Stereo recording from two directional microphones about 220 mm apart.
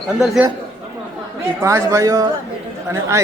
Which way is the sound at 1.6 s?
15° right (ahead or behind).